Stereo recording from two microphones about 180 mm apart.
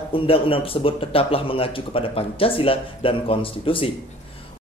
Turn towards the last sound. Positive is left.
turn(degrees=30)  # may be behind; listen again after turning